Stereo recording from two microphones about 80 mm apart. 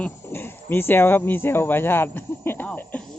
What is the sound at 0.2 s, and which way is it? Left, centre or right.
Speech, left.